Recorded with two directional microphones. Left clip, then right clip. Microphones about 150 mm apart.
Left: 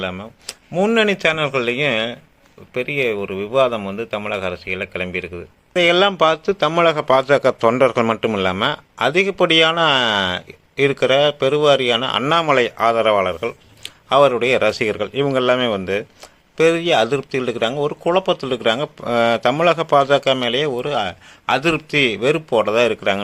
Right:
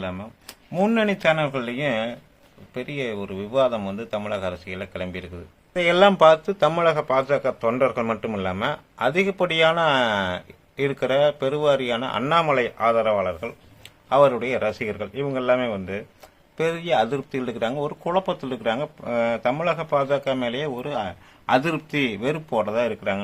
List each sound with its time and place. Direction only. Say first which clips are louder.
0.0 s speech: left 6 dB; 35° left (ahead or behind)
0.9 s speech: left 4 dB; 45° left (ahead or behind); by 6.7 s 25° left (ahead or behind)
6.7 s speech: left 6 dB; 40° left (ahead or behind)
12.3 s speech: left 4 dB; 50° left (ahead or behind)
16.6 s speech: left 7 dB; 30° left (ahead or behind); by 23.2 s 50° left (ahead or behind)